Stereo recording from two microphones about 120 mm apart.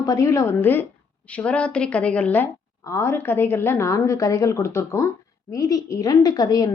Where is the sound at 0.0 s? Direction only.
30° left (ahead or behind); by 2.5 s 15° left (ahead or behind).